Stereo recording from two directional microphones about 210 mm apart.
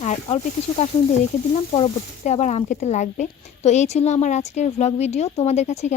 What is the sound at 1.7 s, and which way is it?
Speech, 30° left (ahead or behind).